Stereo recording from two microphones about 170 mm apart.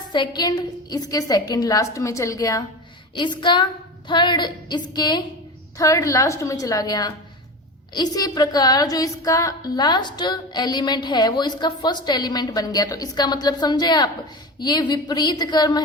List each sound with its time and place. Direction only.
0.1 s a woman's voice: 25° left (ahead or behind)